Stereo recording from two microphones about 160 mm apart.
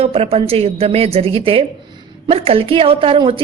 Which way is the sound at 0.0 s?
35° right (ahead or behind).